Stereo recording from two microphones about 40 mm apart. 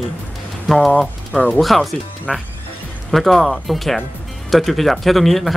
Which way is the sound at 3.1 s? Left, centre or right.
Centre.